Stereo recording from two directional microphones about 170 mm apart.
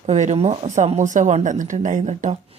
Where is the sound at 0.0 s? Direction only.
40° right (ahead or behind).